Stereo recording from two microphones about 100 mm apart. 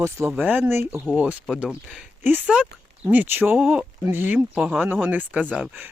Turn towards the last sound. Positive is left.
turn(degrees=-10)  # may be behind; listen again after turning